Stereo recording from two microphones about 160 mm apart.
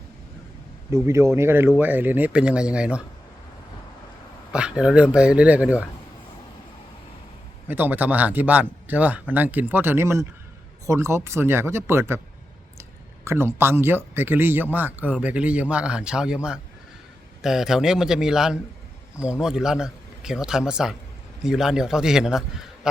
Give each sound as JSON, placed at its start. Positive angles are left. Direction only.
{"t": 1.0, "sound": "a man's voice", "side_deg": -15}
{"t": 4.5, "sound": "a man's voice", "side_deg": -5}
{"t": 7.7, "sound": "a man's voice", "side_deg": -10}
{"t": 13.2, "sound": "a man's voice", "side_deg": -15}